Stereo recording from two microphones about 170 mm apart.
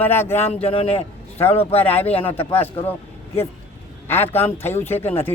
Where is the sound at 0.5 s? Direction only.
35° left (ahead or behind).